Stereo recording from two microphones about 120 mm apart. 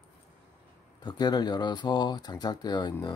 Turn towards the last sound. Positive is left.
turn(degrees=35)  # may be behind; listen again after turning